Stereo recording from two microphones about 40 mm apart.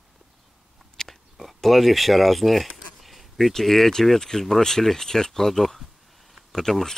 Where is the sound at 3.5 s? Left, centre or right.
Centre.